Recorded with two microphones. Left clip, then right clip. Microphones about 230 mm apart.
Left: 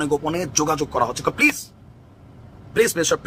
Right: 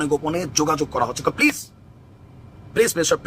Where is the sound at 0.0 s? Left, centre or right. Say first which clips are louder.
Even; centre.